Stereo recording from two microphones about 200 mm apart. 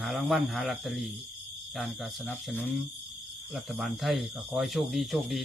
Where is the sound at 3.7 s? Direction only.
Centre (ahead or behind).